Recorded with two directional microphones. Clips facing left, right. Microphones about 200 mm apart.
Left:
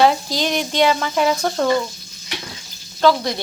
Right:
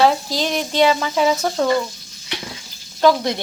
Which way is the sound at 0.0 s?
Centre (ahead or behind).